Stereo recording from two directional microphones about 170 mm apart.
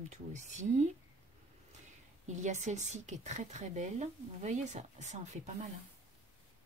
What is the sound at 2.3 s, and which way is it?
A woman's voice, 45° right (ahead or behind).